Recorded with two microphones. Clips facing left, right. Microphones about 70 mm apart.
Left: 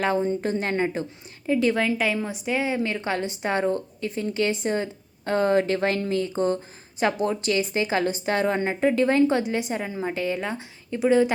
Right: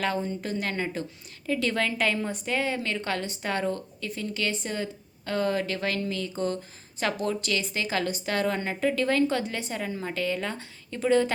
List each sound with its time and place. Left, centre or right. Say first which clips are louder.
0.0 s a woman's voice: left 6 dB; left